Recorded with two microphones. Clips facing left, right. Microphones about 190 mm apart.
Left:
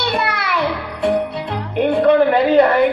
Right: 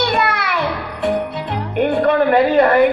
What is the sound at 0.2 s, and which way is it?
Music, 55° right (ahead or behind).